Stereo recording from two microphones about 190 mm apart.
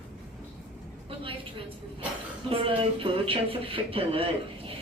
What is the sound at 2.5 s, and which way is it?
Speech, 30° right (ahead or behind).